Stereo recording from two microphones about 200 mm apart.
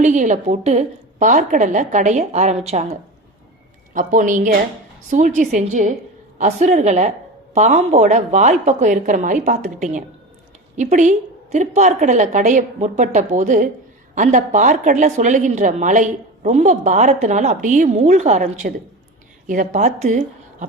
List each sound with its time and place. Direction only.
0.0 s a woman's voice: 35° right (ahead or behind)
3.9 s a woman's voice: 40° right (ahead or behind)